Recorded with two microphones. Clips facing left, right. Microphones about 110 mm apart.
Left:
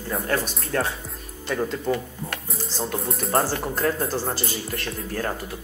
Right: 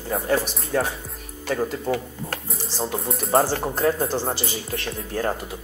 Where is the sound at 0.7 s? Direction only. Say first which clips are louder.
Right 2 dB; 10° right (ahead or behind).